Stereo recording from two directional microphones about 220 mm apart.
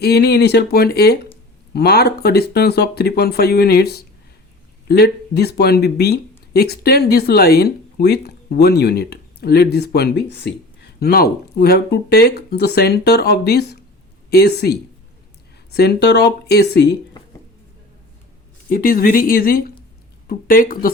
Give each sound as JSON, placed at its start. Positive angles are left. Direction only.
{"t": 0.0, "sound": "speech", "side_deg": 45}
{"t": 18.7, "sound": "speech", "side_deg": 40}